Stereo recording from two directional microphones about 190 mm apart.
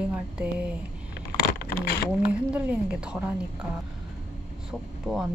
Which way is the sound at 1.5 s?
55° left (ahead or behind).